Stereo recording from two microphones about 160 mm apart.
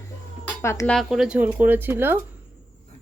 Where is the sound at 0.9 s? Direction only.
Centre (ahead or behind).